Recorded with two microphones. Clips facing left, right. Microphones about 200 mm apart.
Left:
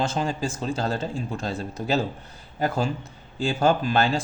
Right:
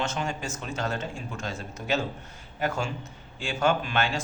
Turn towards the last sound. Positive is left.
turn(degrees=35)  # may be behind; listen again after turning